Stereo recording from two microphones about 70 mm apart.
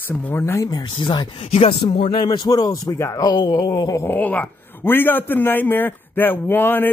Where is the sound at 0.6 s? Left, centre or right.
Left.